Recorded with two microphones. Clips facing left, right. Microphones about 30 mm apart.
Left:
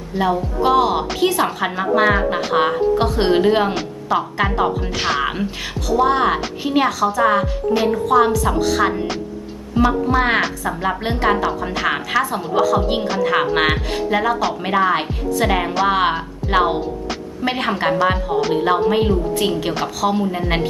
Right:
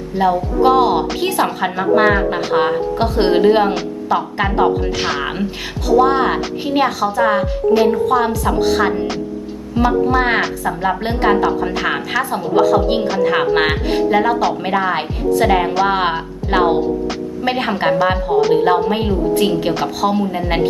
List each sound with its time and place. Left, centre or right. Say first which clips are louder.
0.2 s speech: right 4 dB; centre
8.5 s speech: right 3 dB; centre
9.7 s speech: right 2 dB; centre